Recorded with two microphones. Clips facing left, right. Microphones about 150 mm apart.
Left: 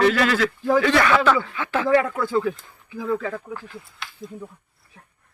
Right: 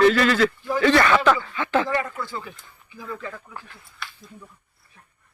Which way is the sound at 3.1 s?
70° left (ahead or behind).